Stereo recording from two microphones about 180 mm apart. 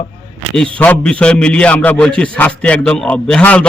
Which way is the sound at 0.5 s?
5° left (ahead or behind).